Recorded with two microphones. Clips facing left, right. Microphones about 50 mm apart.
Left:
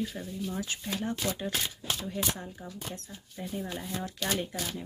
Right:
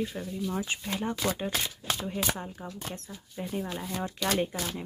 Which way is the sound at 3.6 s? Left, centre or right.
Centre.